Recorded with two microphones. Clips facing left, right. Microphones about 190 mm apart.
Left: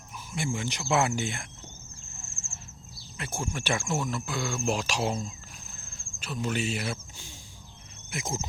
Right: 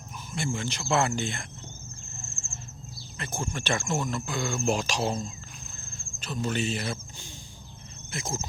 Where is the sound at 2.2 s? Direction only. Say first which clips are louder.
Right 4 dB; 5° left (ahead or behind).